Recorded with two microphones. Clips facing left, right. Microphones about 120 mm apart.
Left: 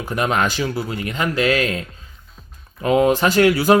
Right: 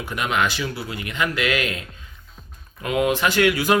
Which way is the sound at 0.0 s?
40° left (ahead or behind).